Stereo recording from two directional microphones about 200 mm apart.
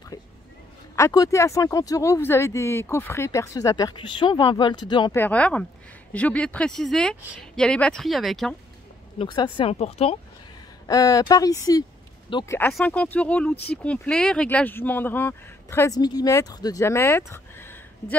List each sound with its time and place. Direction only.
0.1 s a sound: 15° left (ahead or behind)
0.9 s speech: 15° left (ahead or behind)
5.1 s speech: 10° left (ahead or behind)
9.2 s speech: 25° left (ahead or behind)
10.9 s speech: 15° left (ahead or behind)
12.5 s speech: 10° left (ahead or behind)